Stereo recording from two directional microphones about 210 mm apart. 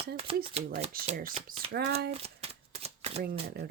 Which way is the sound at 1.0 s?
35° right (ahead or behind).